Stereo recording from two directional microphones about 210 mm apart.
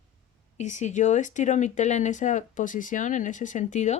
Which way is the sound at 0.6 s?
35° left (ahead or behind).